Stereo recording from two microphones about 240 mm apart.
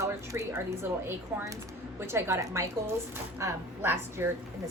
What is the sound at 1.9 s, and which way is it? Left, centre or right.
A woman's voice, centre.